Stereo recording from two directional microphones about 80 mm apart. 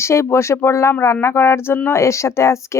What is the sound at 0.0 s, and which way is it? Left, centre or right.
Speech, left.